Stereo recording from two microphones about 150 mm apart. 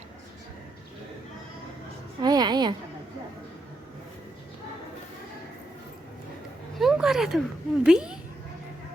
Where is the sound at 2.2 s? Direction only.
25° right (ahead or behind).